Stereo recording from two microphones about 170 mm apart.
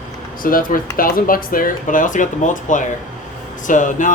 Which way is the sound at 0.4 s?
55° left (ahead or behind).